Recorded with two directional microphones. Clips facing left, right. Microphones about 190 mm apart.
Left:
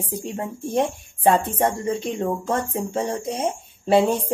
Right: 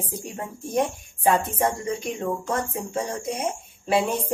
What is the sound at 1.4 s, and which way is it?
Speech, 30° left (ahead or behind).